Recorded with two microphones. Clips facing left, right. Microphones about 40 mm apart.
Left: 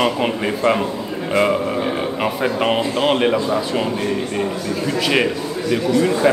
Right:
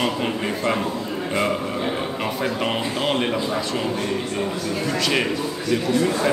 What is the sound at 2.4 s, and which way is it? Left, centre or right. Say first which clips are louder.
Speech: left 6 dB; centre.